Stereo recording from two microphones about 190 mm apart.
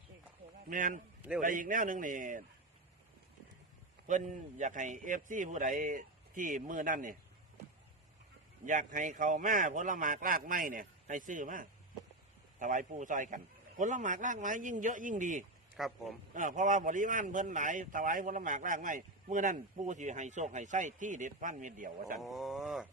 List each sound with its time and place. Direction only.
0.7 s a man's voice: 45° right (ahead or behind)
4.0 s a man's voice: 40° right (ahead or behind)
8.6 s a man's voice: 40° right (ahead or behind)
15.7 s speech: centre (ahead or behind)
16.3 s a man's voice: 40° right (ahead or behind)
22.2 s wild animals: centre (ahead or behind)